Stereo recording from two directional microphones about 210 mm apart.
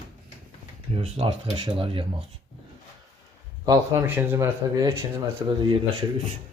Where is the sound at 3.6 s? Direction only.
15° right (ahead or behind).